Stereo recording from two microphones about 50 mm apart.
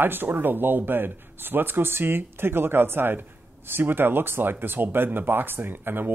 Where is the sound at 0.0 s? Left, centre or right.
Right.